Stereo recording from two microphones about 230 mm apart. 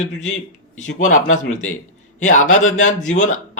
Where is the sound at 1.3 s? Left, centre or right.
Left.